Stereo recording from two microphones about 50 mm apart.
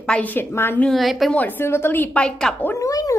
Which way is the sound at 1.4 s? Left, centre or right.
Left.